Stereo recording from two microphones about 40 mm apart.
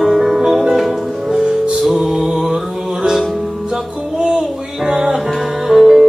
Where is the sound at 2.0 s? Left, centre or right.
Centre.